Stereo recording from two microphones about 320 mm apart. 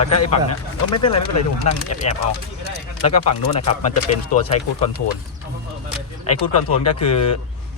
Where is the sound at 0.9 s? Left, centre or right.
Centre.